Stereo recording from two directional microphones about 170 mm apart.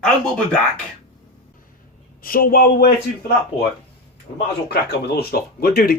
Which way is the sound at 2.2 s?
60° left (ahead or behind).